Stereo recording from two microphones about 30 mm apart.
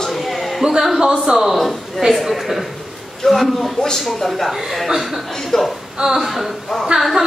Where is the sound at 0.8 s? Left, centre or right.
Centre.